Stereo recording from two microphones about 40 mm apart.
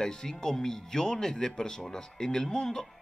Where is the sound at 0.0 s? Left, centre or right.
Centre.